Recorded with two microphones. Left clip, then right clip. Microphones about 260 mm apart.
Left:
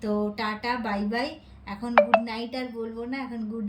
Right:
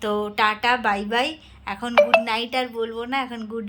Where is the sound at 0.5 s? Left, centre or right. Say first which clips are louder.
Right 8 dB; centre.